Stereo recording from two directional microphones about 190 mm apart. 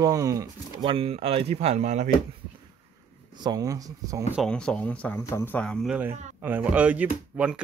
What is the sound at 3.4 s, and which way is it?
Speech, 20° right (ahead or behind).